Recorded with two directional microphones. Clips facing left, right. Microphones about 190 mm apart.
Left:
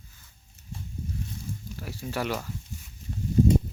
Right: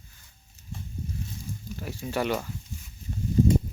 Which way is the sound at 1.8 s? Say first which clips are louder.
Right 3 dB; centre (ahead or behind).